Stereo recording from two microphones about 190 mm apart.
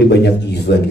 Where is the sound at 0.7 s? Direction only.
60° left (ahead or behind).